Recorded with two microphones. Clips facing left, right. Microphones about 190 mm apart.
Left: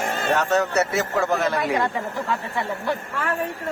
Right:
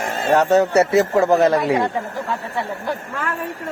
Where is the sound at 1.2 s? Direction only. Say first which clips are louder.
Right 8 dB; 35° right (ahead or behind).